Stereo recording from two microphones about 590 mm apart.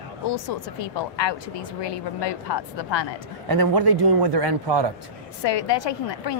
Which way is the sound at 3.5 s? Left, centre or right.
Right.